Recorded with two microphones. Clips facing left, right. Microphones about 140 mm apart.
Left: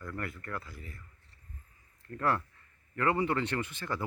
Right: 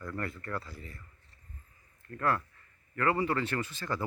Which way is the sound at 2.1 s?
25° left (ahead or behind).